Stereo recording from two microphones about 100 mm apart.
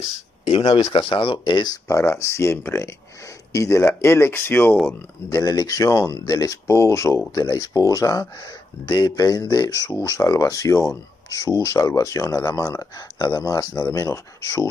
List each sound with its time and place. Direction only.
0.5 s speech: 70° left (ahead or behind)
0.9 s speech: 60° left (ahead or behind)
1.9 s speech: 30° left (ahead or behind)
5.3 s speech: 40° left (ahead or behind)